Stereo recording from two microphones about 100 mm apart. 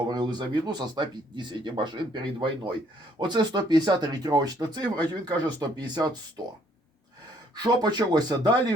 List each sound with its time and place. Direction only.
0.1 s speech: 45° right (ahead or behind)
7.5 s speech: 45° right (ahead or behind)